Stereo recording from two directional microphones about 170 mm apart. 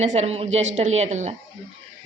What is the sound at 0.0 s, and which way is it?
A woman's voice, 40° right (ahead or behind).